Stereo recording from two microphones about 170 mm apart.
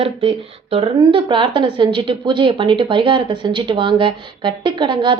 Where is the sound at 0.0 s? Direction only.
35° right (ahead or behind).